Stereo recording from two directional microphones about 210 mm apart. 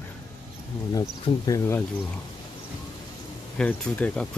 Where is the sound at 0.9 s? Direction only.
15° left (ahead or behind).